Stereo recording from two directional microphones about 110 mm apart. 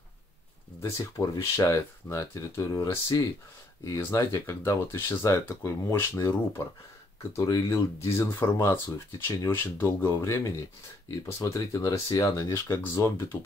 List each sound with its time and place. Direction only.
0.8 s speech: 30° left (ahead or behind)